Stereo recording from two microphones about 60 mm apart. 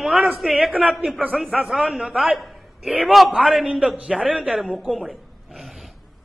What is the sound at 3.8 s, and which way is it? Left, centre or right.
Speech, centre.